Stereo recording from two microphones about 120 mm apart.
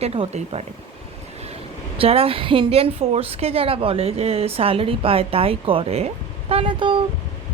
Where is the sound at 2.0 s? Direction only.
55° right (ahead or behind).